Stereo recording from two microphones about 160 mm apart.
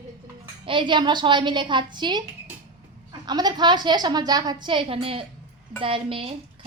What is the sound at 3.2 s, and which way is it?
A woman's voice, 25° right (ahead or behind).